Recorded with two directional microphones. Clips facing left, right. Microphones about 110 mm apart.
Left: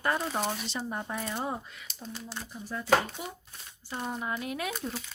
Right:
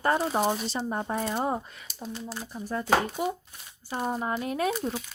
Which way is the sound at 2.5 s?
50° right (ahead or behind).